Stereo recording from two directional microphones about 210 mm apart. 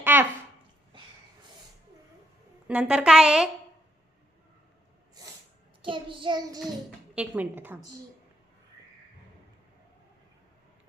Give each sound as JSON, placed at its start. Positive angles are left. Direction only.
{"t": 0.0, "sound": "a sound", "side_deg": -10}
{"t": 2.6, "sound": "a woman's voice", "side_deg": -5}
{"t": 5.9, "sound": "child singing", "side_deg": -25}
{"t": 7.2, "sound": "a woman's voice", "side_deg": -10}